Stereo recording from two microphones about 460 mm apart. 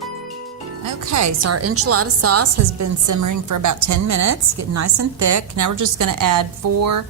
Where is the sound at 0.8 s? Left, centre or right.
Right.